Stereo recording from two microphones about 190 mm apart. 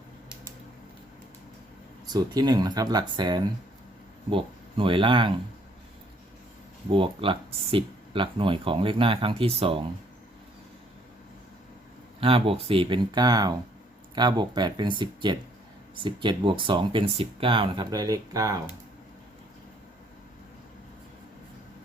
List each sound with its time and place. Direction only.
2.0 s speech: 20° right (ahead or behind)
6.9 s speech: 25° right (ahead or behind)
12.2 s speech: 30° right (ahead or behind)